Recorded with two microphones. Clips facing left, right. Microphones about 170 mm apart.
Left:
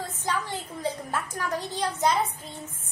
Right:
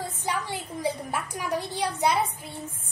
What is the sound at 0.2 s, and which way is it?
A woman's voice, 15° right (ahead or behind).